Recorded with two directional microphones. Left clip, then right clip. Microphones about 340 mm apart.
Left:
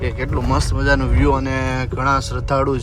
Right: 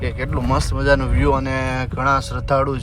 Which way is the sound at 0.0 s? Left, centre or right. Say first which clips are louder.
Left 1 dB; centre.